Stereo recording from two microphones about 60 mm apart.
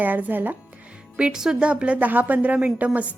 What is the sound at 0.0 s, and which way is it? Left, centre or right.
Speech, right.